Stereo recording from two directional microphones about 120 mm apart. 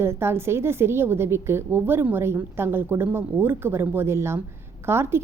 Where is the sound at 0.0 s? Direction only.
20° right (ahead or behind).